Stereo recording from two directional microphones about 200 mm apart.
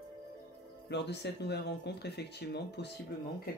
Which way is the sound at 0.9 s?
60° left (ahead or behind).